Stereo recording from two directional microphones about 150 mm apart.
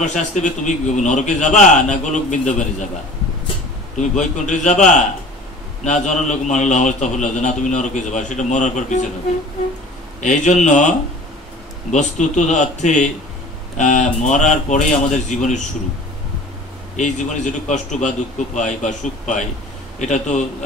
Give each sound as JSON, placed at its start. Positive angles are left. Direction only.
{"t": 0.0, "sound": "a man's voice", "side_deg": 50}
{"t": 4.2, "sound": "a man's voice", "side_deg": 55}
{"t": 10.2, "sound": "a man's voice", "side_deg": 50}
{"t": 16.9, "sound": "a man's voice", "side_deg": 55}